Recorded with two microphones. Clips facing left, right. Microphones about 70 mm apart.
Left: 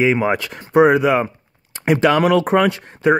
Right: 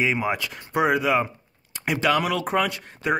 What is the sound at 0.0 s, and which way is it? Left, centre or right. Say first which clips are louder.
Speech: left 7 dB; left.